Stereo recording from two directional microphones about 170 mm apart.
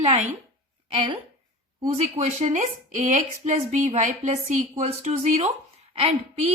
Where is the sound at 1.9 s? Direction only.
40° right (ahead or behind).